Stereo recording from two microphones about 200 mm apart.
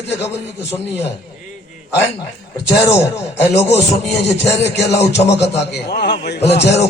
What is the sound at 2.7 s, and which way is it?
Speech, 15° left (ahead or behind).